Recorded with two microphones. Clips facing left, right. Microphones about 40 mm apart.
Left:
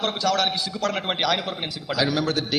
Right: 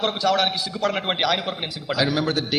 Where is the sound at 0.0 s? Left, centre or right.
Centre.